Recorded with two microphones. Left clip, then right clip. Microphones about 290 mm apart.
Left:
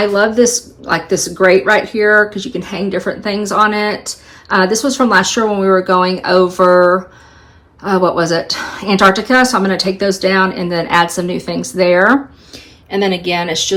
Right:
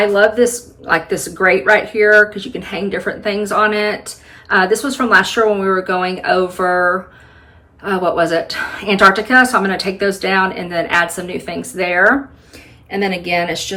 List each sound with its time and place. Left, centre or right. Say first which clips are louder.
0.1 s speech: left 1 dB; centre